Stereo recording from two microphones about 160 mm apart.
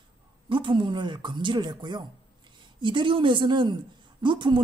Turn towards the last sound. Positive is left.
turn(degrees=-30)  # may be behind; listen again after turning